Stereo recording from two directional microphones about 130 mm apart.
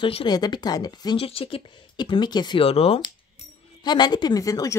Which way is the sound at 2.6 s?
50° left (ahead or behind).